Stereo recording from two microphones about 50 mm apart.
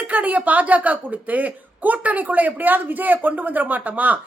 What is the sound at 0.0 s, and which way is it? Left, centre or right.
Speech, right.